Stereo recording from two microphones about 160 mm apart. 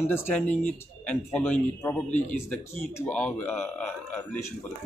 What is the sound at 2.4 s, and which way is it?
Speech, 10° left (ahead or behind).